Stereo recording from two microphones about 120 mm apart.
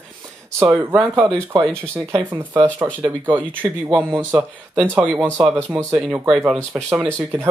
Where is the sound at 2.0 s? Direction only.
20° right (ahead or behind).